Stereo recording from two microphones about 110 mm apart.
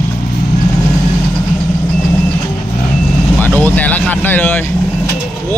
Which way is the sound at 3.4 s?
15° left (ahead or behind).